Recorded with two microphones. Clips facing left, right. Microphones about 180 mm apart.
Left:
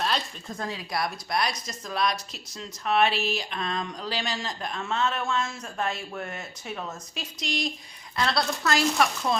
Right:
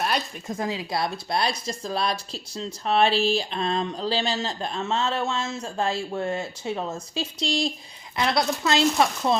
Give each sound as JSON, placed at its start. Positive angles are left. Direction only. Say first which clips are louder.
{"t": 0.0, "sound": "speech", "louder": "right 2 dB", "side_deg": -15}
{"t": 8.1, "sound": "speech", "louder": "right 3 dB", "side_deg": -20}